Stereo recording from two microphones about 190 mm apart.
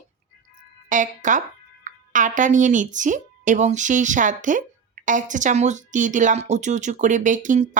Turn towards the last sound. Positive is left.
turn(degrees=-40)  # may be behind; listen again after turning